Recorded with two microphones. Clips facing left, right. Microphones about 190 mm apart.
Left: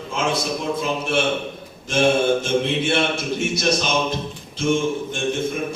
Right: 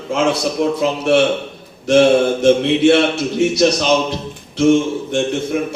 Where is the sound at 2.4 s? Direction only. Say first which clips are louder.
Right 10 dB; 65° right (ahead or behind).